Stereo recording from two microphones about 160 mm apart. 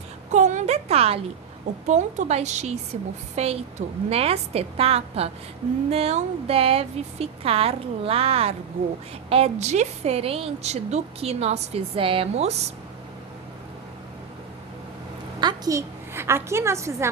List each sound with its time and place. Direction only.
0.3 s a sound: 45° right (ahead or behind)
1.9 s a woman's voice: 45° right (ahead or behind)
15.4 s a woman's voice: 25° right (ahead or behind)